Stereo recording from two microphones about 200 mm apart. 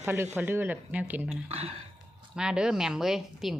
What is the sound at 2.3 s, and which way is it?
Speech, 5° right (ahead or behind).